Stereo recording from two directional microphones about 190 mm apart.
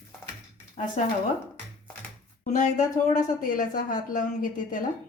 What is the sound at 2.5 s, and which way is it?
A woman's voice, 40° left (ahead or behind).